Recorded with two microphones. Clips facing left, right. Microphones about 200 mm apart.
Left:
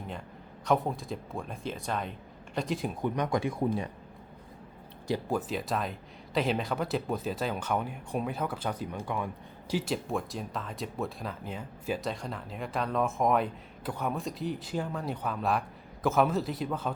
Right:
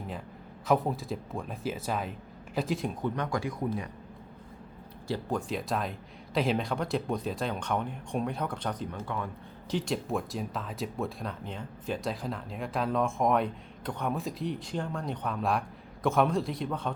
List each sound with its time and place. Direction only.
0.6 s speech: centre (ahead or behind)
3.0 s speech: 20° left (ahead or behind)
5.0 s speech: 15° left (ahead or behind)
5.5 s speech: centre (ahead or behind)